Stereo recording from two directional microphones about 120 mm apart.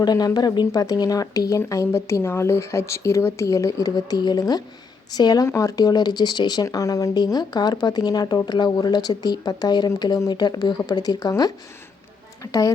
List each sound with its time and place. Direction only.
0.0 s speech: 35° left (ahead or behind)